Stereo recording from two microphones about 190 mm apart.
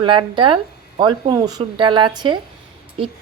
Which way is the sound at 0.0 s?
25° right (ahead or behind).